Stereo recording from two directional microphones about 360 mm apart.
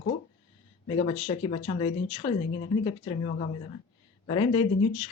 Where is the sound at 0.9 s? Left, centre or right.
Centre.